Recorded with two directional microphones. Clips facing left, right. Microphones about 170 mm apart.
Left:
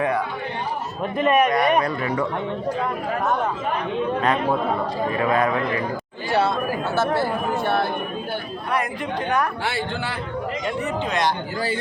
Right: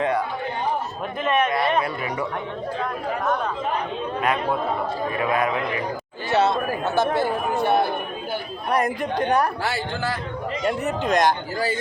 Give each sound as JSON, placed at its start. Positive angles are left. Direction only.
{"t": 1.2, "sound": "speech", "side_deg": 0}
{"t": 1.5, "sound": "speech", "side_deg": 15}
{"t": 5.3, "sound": "speech", "side_deg": -20}
{"t": 8.7, "sound": "a man's voice", "side_deg": -40}